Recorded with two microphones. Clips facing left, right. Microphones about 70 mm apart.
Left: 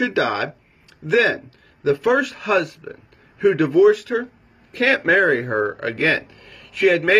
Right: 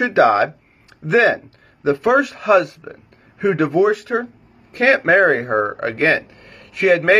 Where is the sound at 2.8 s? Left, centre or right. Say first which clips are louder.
Even; right.